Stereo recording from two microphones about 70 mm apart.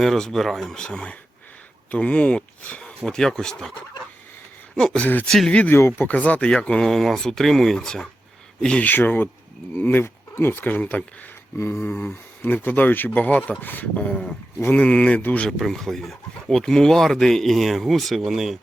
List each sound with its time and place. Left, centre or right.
0.0 s speech: centre
0.8 s speech: centre
3.0 s speech: centre
4.8 s speech: centre
5.5 s speech: left; by 8.0 s centre
8.6 s speech: centre
11.5 s a sound: left
11.8 s speech: left
14.6 s speech: left
14.8 s speech: centre
15.4 s speech: centre